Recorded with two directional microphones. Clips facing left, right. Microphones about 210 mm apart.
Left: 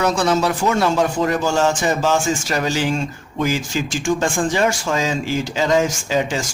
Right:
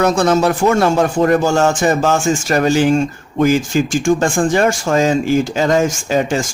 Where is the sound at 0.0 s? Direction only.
50° right (ahead or behind).